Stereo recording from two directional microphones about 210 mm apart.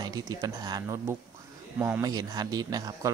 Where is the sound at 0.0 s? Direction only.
20° right (ahead or behind).